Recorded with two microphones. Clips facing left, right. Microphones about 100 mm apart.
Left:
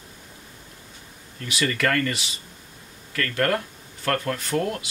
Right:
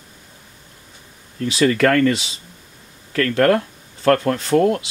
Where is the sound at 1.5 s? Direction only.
35° right (ahead or behind).